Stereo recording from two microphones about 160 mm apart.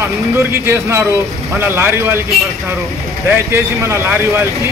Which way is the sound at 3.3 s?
15° right (ahead or behind).